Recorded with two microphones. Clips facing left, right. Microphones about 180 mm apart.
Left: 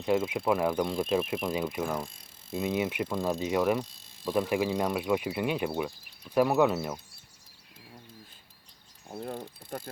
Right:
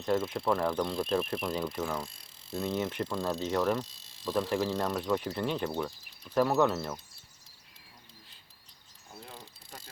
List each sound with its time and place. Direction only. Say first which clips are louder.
0.3 s speech: left 2 dB; 10° left (ahead or behind)
9.1 s insect: left 11 dB; 50° left (ahead or behind)